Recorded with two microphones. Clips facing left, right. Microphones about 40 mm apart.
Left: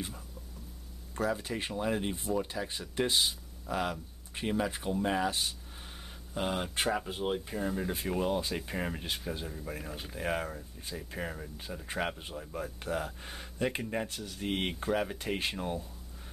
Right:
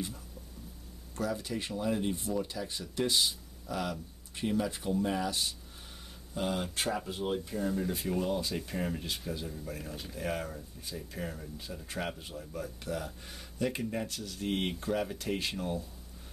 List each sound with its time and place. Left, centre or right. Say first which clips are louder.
1.1 s speech: left 2 dB; left